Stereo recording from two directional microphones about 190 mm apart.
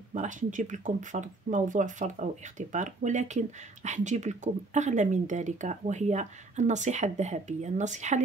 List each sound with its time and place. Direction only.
0.1 s speech: 40° right (ahead or behind)